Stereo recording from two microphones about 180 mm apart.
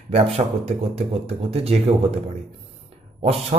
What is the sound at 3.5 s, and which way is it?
Speech, 35° right (ahead or behind).